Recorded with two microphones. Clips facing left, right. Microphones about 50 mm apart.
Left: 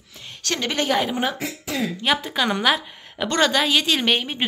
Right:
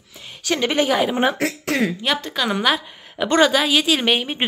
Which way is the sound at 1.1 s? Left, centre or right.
Right.